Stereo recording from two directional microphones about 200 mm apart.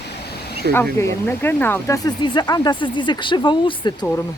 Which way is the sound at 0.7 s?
10° left (ahead or behind).